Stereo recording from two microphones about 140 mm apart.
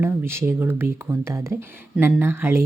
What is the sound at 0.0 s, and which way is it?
Speech, 15° right (ahead or behind).